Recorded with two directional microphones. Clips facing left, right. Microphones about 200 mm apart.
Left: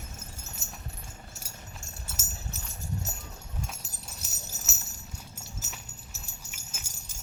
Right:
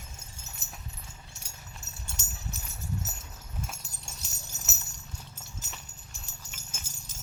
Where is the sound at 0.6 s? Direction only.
Centre (ahead or behind).